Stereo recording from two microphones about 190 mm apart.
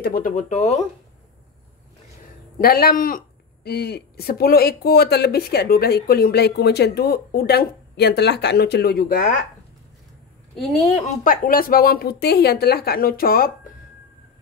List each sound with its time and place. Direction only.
0.0 s speech: 50° left (ahead or behind)
2.6 s speech: 50° left (ahead or behind)
10.5 s a woman's voice: centre (ahead or behind)
11.1 s speech: 45° left (ahead or behind)